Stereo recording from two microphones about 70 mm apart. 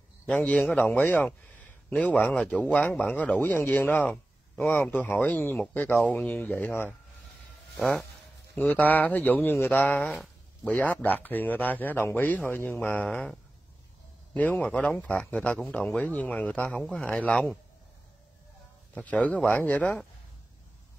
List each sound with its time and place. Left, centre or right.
0.3 s a man's voice: left
7.7 s speech: centre
8.5 s speech: left
13.0 s speech: centre
16.8 s speech: centre
18.9 s speech: left